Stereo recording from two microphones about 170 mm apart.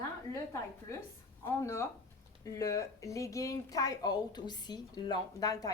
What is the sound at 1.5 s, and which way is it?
A woman's voice, 15° left (ahead or behind).